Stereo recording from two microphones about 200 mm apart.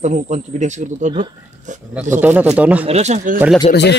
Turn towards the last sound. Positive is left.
turn(degrees=55)  # may be behind; listen again after turning